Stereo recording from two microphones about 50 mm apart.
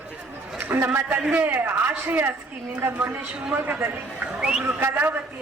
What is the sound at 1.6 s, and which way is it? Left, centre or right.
Speech, right.